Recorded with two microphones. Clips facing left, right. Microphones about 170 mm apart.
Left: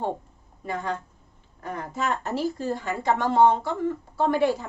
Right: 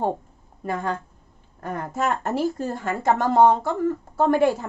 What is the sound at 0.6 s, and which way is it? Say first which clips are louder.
A woman's voice: right 3 dB; 50° right (ahead or behind).